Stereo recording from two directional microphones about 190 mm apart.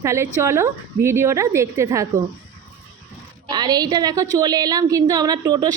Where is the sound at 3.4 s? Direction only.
20° right (ahead or behind).